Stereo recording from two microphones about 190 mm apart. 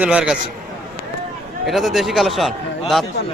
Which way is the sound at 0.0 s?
5° right (ahead or behind).